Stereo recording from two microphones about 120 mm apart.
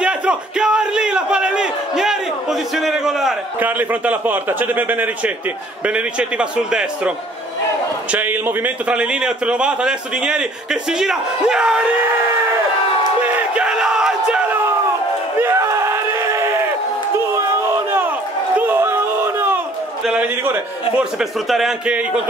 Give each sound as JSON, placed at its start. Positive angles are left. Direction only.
{"t": 0.0, "sound": "crowd", "side_deg": -10}
{"t": 3.5, "sound": "a man's voice", "side_deg": -15}
{"t": 13.2, "sound": "battle cry", "side_deg": -10}
{"t": 15.4, "sound": "crowd", "side_deg": -25}
{"t": 18.7, "sound": "a sound", "side_deg": -20}
{"t": 21.0, "sound": "a man's voice", "side_deg": 0}